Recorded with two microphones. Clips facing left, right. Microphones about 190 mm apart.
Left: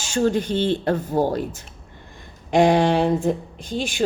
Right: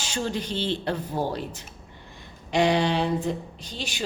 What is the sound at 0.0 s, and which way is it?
Speech, 50° left (ahead or behind).